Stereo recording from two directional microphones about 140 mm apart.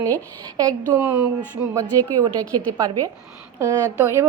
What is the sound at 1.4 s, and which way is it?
A woman's voice, 25° right (ahead or behind).